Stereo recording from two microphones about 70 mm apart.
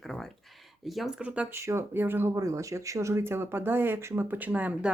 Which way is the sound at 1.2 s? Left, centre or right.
Centre.